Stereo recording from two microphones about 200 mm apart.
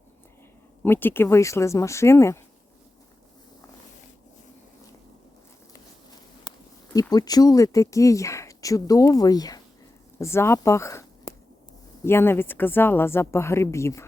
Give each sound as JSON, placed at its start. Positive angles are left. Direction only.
{"t": 0.8, "sound": "speech", "side_deg": 10}
{"t": 6.5, "sound": "a sound", "side_deg": 20}
{"t": 7.1, "sound": "speech", "side_deg": 20}